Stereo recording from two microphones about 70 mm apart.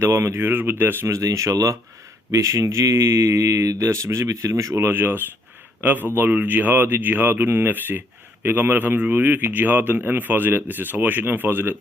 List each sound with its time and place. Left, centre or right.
0.0 s speech: right
1.0 s speech: right